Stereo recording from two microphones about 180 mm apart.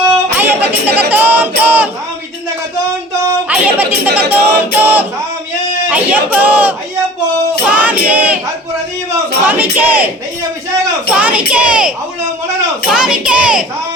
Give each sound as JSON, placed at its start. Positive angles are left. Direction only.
{"t": 0.3, "sound": "music", "side_deg": -10}
{"t": 3.5, "sound": "music", "side_deg": -10}
{"t": 5.9, "sound": "speech", "side_deg": -10}
{"t": 7.7, "sound": "choir", "side_deg": -10}
{"t": 9.5, "sound": "speech", "side_deg": -10}
{"t": 11.1, "sound": "a child's voice", "side_deg": -5}